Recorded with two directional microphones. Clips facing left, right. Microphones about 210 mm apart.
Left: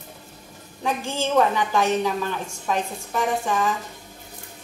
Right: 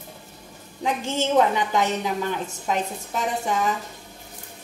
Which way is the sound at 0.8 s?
20° right (ahead or behind).